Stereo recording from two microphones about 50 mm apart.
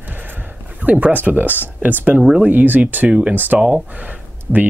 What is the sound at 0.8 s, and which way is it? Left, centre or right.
Speech, right.